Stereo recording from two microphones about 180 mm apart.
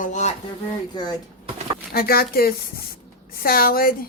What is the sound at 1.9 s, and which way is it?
Speech, 55° left (ahead or behind).